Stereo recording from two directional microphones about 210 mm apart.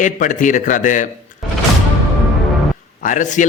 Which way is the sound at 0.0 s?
35° left (ahead or behind).